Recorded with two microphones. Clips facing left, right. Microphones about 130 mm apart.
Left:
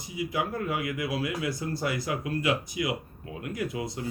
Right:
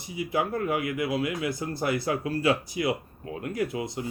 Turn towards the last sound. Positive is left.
turn(degrees=-25)  # may be behind; listen again after turning